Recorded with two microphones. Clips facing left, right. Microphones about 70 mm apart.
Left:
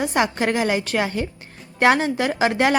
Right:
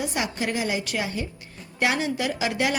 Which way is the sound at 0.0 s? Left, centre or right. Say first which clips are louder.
Left 7 dB; left.